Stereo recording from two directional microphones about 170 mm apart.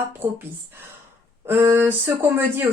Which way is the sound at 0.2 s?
15° right (ahead or behind).